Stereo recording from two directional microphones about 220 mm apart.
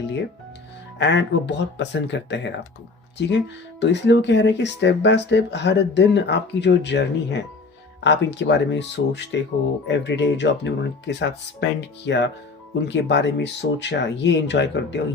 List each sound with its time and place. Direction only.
0.9 s speech: 55° left (ahead or behind)